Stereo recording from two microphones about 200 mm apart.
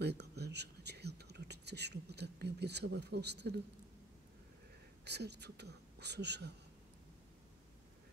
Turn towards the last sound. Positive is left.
turn(degrees=-55)  # may be behind; listen again after turning